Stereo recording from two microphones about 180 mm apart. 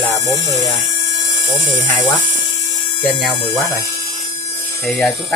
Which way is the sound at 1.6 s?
30° left (ahead or behind).